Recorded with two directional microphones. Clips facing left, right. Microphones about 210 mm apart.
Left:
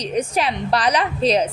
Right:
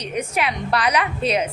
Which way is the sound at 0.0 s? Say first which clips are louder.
Left 3 dB; 30° left (ahead or behind).